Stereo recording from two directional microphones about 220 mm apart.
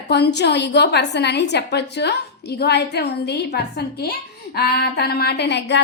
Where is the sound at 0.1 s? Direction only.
50° left (ahead or behind).